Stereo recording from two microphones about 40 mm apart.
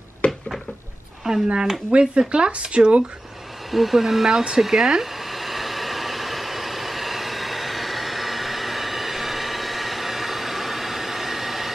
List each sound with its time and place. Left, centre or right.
0.2 s cupboard open or close: left
1.3 s speech: centre
1.9 s speech: right
3.7 s a sound: centre